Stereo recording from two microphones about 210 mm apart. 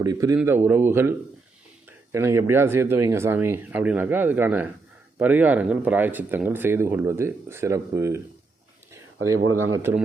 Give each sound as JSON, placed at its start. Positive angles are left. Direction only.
{"t": 0.0, "sound": "speech", "side_deg": -15}
{"t": 2.1, "sound": "speech", "side_deg": -15}
{"t": 9.3, "sound": "speech", "side_deg": -85}
{"t": 9.7, "sound": "speech", "side_deg": -10}